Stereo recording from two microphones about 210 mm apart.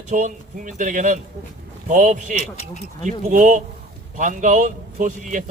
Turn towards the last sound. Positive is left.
turn(degrees=-35)  # may be behind; listen again after turning